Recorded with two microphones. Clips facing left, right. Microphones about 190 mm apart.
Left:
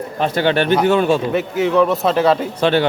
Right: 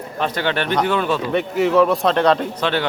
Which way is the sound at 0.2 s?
30° left (ahead or behind).